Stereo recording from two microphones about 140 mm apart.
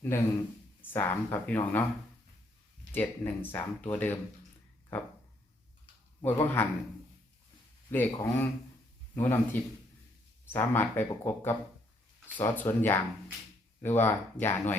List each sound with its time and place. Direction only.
0.1 s speech: 15° left (ahead or behind)
2.9 s speech: 15° left (ahead or behind)
6.2 s speech: 15° left (ahead or behind)
7.9 s speech: 15° left (ahead or behind)